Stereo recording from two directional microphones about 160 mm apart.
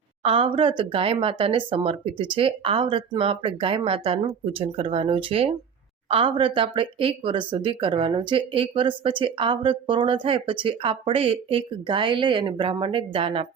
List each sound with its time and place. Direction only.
0.2 s speech: 35° right (ahead or behind)